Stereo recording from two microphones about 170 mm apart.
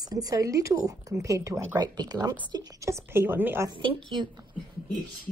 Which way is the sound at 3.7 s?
30° right (ahead or behind).